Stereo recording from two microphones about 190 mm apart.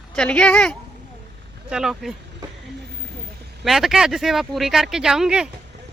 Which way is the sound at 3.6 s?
Centre (ahead or behind).